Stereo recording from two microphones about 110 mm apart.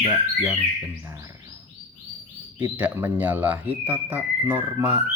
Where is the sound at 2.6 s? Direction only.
20° right (ahead or behind).